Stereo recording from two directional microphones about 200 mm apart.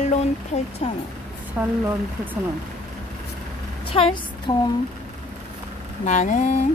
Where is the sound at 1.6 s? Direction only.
10° right (ahead or behind).